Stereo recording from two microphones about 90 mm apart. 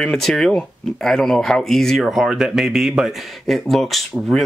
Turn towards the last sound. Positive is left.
turn(degrees=0)  # may be behind; listen again after turning